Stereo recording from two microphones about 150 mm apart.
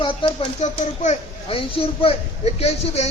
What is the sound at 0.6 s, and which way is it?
Speech, 50° left (ahead or behind).